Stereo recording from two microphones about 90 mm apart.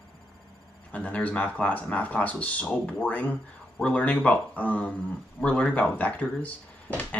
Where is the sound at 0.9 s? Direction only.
15° left (ahead or behind).